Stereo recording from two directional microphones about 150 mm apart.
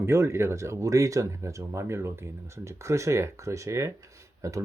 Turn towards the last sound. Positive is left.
turn(degrees=-20)  # may be behind; listen again after turning